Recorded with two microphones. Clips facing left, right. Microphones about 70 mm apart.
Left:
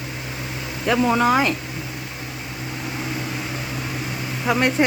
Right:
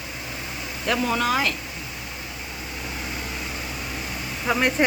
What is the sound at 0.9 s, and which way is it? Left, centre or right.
Speech, centre.